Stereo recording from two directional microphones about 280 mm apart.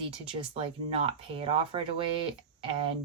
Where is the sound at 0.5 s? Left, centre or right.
Right.